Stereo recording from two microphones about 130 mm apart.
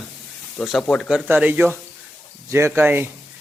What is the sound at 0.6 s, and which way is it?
Speech, centre (ahead or behind).